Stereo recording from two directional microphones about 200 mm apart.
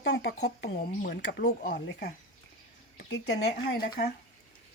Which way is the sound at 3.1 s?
60° left (ahead or behind).